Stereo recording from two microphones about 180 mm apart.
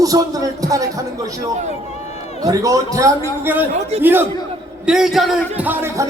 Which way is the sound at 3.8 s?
35° right (ahead or behind).